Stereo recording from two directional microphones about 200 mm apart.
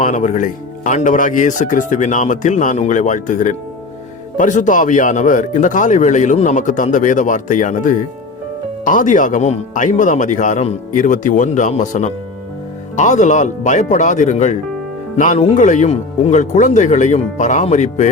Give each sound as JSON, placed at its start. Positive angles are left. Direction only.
{"t": 0.0, "sound": "speech", "side_deg": 35}